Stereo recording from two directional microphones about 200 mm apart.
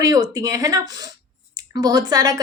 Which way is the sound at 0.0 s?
15° right (ahead or behind).